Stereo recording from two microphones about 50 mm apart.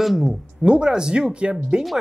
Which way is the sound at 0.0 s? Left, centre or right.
Centre.